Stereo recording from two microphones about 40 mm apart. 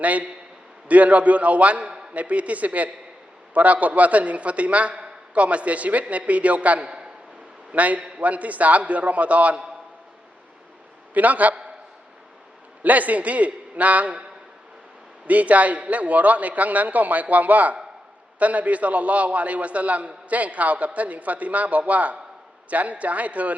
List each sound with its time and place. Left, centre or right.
0.0 s a man's voice: right
11.1 s a man's voice: right
12.8 s a man's voice: right
15.3 s a man's voice: right